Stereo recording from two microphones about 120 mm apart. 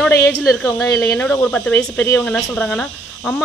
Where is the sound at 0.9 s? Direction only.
15° left (ahead or behind).